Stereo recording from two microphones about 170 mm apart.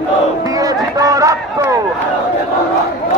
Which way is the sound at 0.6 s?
20° right (ahead or behind).